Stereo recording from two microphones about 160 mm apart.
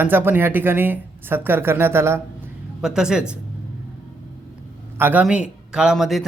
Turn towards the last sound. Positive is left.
turn(degrees=0)  # may be behind; listen again after turning